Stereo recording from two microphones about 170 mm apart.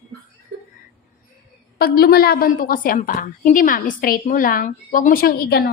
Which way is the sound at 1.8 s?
65° left (ahead or behind).